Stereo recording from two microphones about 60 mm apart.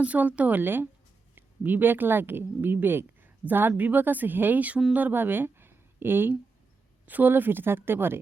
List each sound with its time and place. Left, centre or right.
0.0 s a woman's voice: right